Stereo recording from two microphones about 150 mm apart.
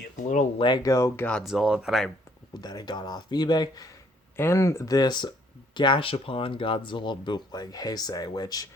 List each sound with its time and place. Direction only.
0.6 s speech: 25° left (ahead or behind); by 2.1 s centre (ahead or behind)
2.5 s speech: 25° left (ahead or behind)
4.4 s speech: 20° left (ahead or behind)